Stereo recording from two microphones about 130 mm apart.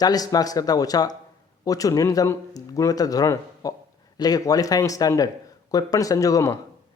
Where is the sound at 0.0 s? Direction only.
30° left (ahead or behind).